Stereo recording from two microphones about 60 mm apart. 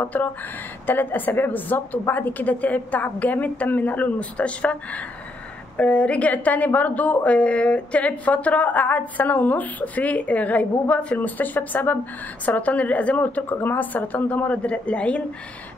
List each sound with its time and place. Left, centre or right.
0.0 s a woman's voice: left